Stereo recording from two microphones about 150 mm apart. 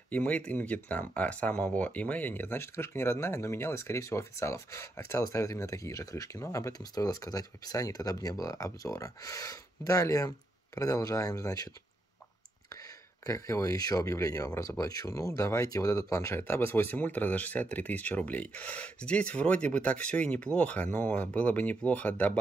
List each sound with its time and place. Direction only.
0.1 s speech: 10° left (ahead or behind)
13.3 s speech: 20° left (ahead or behind)